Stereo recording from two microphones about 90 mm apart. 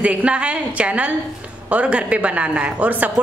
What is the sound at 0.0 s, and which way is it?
Speech, 15° right (ahead or behind).